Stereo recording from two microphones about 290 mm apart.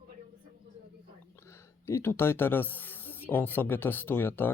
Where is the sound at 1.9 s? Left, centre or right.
Centre.